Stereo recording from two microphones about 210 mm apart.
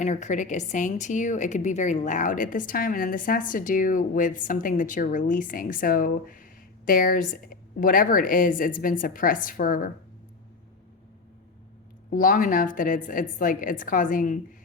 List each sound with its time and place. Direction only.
0.0 s a woman's voice: 35° left (ahead or behind)
12.1 s a woman's voice: 40° left (ahead or behind)